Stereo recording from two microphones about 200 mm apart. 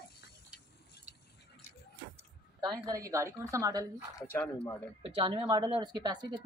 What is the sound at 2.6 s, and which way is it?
A woman's voice, 20° right (ahead or behind).